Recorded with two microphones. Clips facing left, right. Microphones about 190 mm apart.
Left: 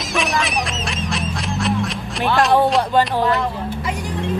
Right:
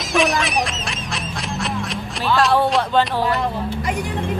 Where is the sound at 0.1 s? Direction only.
Centre (ahead or behind).